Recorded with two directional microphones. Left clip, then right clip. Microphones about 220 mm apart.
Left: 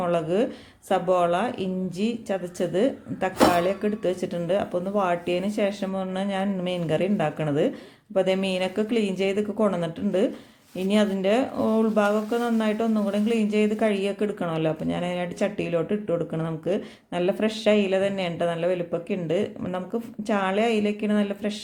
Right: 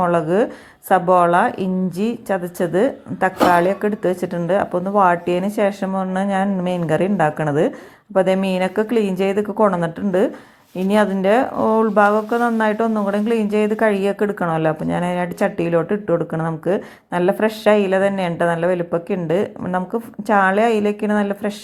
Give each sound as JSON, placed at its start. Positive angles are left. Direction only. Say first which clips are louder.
{"t": 0.0, "sound": "speech", "louder": "right 7 dB", "side_deg": -20}